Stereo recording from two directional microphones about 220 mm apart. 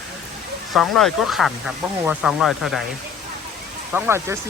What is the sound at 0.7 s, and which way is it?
Speech, centre (ahead or behind).